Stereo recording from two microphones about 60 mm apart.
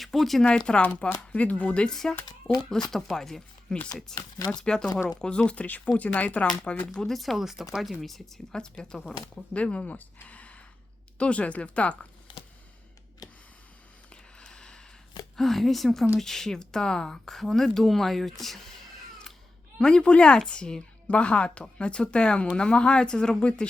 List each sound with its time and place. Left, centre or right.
0.0 s speech: centre
0.4 s speech: centre
1.9 s speech: centre
4.1 s speech: left
4.6 s speech: centre
6.9 s speech: centre
8.5 s speech: centre
10.2 s gasp: left
11.2 s speech: left
14.1 s a sound: centre
15.4 s speech: centre
19.8 s speech: centre